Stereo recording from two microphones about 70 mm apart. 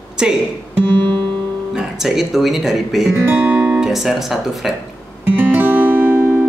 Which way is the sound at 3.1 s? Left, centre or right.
Right.